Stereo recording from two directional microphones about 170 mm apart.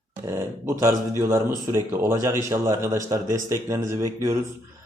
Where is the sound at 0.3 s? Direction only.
15° right (ahead or behind).